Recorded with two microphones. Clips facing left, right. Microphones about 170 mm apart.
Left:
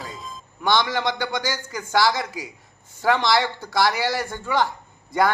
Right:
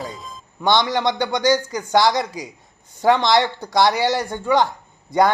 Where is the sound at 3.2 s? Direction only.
20° right (ahead or behind).